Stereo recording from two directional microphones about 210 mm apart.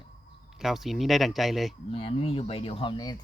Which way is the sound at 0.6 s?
Centre (ahead or behind).